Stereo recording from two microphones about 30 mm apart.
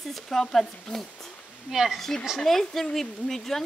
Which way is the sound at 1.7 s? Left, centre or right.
Centre.